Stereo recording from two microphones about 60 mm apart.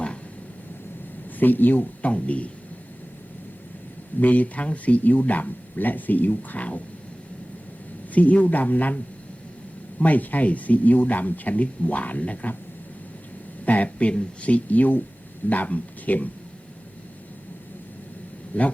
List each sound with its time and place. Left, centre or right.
1.4 s speech: left
4.2 s speech: left
8.1 s speech: left
10.0 s speech: left
13.7 s speech: left
18.5 s speech: left